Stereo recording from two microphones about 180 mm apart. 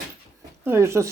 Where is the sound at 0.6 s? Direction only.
15° right (ahead or behind).